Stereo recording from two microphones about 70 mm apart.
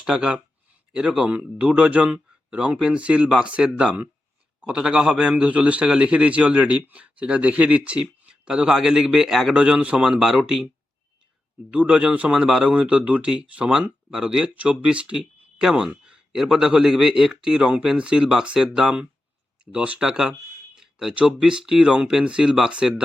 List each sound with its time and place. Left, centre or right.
0.0 s speech: centre
11.7 s speech: centre